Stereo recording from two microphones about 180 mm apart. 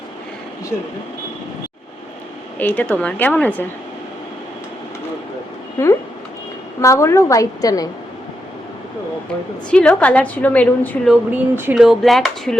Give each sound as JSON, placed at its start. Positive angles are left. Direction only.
{"t": 2.6, "sound": "a woman's voice", "side_deg": 10}
{"t": 6.8, "sound": "a woman's voice", "side_deg": 15}
{"t": 9.6, "sound": "a woman's voice", "side_deg": 5}
{"t": 11.1, "sound": "speech", "side_deg": -10}